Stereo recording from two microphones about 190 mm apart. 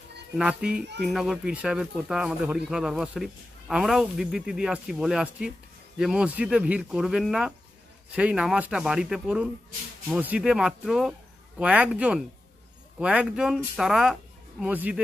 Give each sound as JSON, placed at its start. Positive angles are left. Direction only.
{"t": 0.4, "sound": "a man's voice", "side_deg": -5}